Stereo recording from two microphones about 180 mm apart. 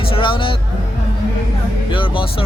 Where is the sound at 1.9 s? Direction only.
30° left (ahead or behind).